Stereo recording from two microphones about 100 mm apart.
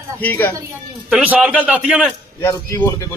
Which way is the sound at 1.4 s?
10° right (ahead or behind).